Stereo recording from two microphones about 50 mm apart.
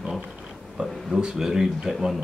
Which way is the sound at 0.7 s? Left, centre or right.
Centre.